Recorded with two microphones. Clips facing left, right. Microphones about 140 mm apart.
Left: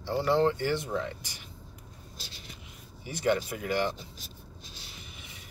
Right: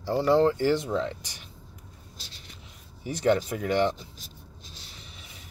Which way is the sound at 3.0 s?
30° right (ahead or behind).